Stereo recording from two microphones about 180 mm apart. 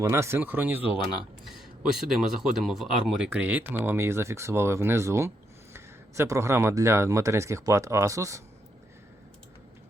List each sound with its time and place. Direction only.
0.0 s speech: 15° right (ahead or behind)